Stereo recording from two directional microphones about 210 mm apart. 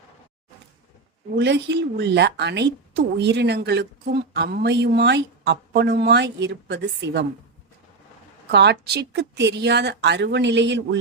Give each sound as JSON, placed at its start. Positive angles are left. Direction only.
{"t": 1.4, "sound": "speech", "side_deg": -55}
{"t": 8.4, "sound": "speech", "side_deg": -55}